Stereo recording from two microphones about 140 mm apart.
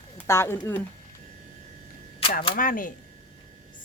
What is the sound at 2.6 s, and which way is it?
Speech, 80° left.